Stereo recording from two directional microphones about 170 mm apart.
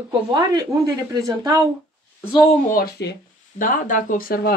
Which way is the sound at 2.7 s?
60° left (ahead or behind).